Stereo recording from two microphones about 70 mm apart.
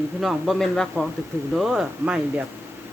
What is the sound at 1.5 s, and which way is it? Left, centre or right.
Speech, centre.